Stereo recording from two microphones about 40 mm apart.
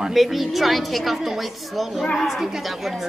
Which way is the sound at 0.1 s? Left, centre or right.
Centre.